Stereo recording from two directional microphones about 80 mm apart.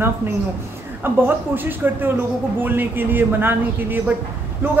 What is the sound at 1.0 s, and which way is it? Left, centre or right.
Speech, right.